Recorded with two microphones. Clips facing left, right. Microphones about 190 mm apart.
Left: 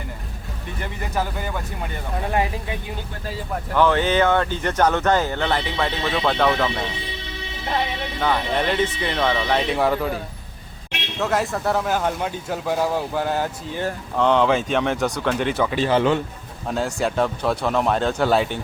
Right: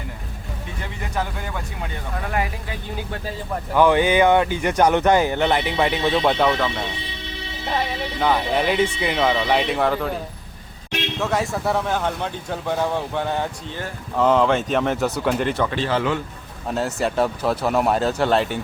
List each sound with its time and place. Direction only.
1.1 s speech: 5° left (ahead or behind)
2.2 s speech: 25° left (ahead or behind)
3.8 s speech: 15° right (ahead or behind)
8.2 s speech: 5° right (ahead or behind)
11.2 s speech: centre (ahead or behind)
16.6 s speech: centre (ahead or behind)